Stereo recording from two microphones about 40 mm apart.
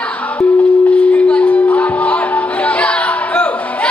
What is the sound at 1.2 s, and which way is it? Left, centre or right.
Music, left.